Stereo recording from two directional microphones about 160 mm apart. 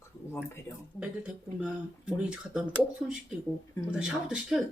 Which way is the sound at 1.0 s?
5° right (ahead or behind).